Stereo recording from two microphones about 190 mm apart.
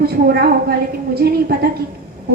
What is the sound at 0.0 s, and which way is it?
A woman's voice, 55° right (ahead or behind).